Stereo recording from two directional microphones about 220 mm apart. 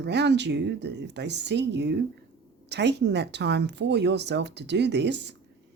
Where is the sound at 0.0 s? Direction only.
50° right (ahead or behind).